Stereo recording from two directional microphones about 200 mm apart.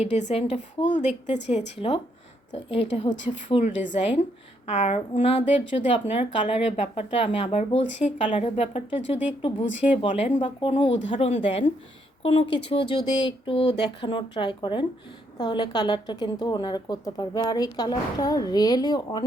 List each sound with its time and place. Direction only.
0.0 s a woman's voice: 35° left (ahead or behind)